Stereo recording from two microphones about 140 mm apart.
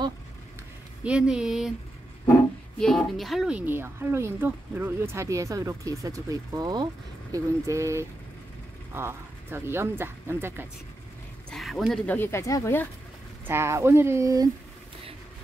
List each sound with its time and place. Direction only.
1.0 s speech: 5° right (ahead or behind)
2.8 s a woman's voice: 5° left (ahead or behind); by 10.7 s 15° right (ahead or behind)
11.5 s a sound: centre (ahead or behind)
11.9 s speech: 15° left (ahead or behind)
13.5 s speech: 20° right (ahead or behind)